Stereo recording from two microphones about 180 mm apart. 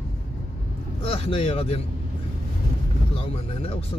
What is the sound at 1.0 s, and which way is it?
Speech, 30° left (ahead or behind).